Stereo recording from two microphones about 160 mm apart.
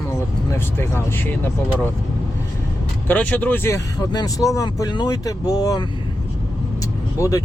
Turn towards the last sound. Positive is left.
turn(degrees=20)  # may be behind; listen again after turning